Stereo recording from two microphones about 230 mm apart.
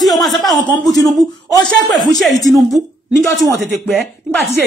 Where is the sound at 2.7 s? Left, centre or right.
Centre.